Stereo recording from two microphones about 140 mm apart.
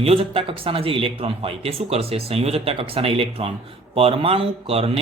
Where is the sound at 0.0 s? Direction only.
40° right (ahead or behind).